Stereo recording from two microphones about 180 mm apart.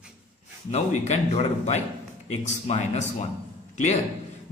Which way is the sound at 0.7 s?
40° left (ahead or behind).